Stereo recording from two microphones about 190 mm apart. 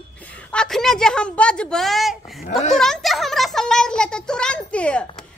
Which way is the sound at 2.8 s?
Centre (ahead or behind).